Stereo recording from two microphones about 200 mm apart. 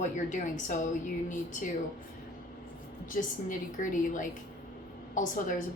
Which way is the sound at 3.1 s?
40° left (ahead or behind).